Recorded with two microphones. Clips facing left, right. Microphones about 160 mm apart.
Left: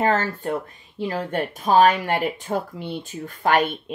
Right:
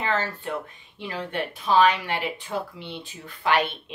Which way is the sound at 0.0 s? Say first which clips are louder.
Left 6 dB; 45° left (ahead or behind).